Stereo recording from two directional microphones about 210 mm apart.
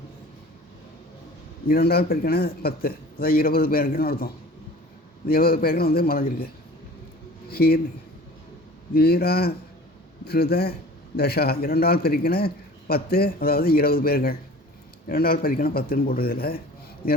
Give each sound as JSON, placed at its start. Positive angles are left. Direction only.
{"t": 1.6, "sound": "a man's voice", "side_deg": 45}
{"t": 5.3, "sound": "a man's voice", "side_deg": 45}
{"t": 7.5, "sound": "a man's voice", "side_deg": 45}
{"t": 8.9, "sound": "a man's voice", "side_deg": 45}